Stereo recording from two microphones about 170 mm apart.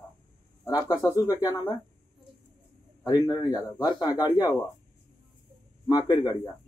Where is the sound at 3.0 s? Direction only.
20° left (ahead or behind).